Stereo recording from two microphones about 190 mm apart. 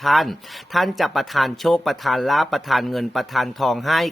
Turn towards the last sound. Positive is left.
turn(degrees=0)  # may be behind; listen again after turning